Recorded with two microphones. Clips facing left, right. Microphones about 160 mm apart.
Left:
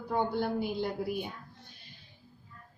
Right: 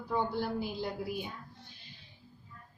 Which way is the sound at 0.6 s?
55° left (ahead or behind).